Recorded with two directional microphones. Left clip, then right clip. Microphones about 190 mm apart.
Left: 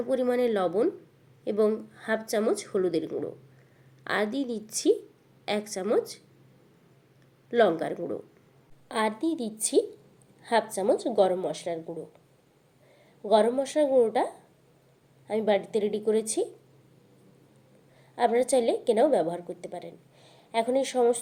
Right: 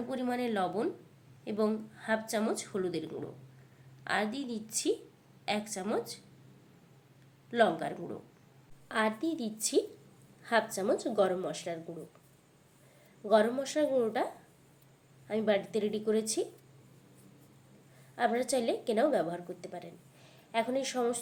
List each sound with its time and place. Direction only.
0.1 s a woman's voice: 20° left (ahead or behind)
7.5 s a woman's voice: 20° left (ahead or behind)
13.2 s a woman's voice: 15° left (ahead or behind)
15.3 s a woman's voice: 20° left (ahead or behind)
18.1 s a woman's voice: 20° left (ahead or behind)